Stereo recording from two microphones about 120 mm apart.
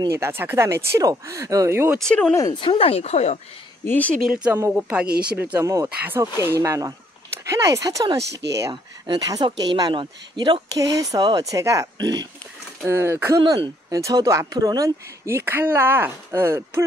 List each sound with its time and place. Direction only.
0.1 s speech: 20° right (ahead or behind)
2.0 s speech: 5° left (ahead or behind)
2.5 s speech: 40° left (ahead or behind); by 3.3 s 65° left (ahead or behind)
3.8 s speech: 15° left (ahead or behind)
4.2 s speech: 5° right (ahead or behind)
5.6 s speech: 25° right (ahead or behind)
13.4 s speech: 35° right (ahead or behind); by 16.8 s 20° right (ahead or behind)